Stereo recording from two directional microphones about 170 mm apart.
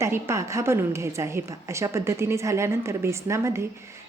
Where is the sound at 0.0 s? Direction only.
15° right (ahead or behind).